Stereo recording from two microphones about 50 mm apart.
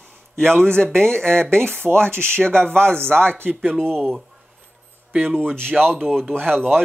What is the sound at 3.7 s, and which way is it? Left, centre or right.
Speech, centre.